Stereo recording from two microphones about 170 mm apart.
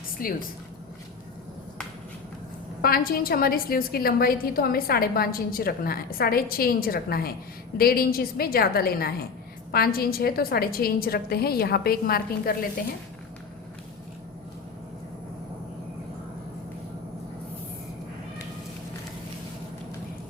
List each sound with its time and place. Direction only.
0.2 s a woman's voice: 55° left (ahead or behind)
2.8 s a woman's voice: 60° left (ahead or behind)